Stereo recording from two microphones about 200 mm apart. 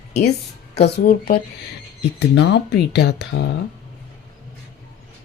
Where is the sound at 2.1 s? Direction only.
60° left (ahead or behind).